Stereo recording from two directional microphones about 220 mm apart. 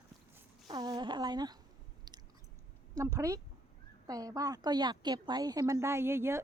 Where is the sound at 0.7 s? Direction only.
15° right (ahead or behind).